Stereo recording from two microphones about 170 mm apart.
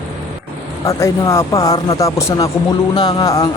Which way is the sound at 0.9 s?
15° left (ahead or behind).